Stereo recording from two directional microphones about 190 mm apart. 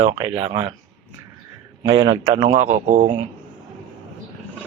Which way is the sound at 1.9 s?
85° right.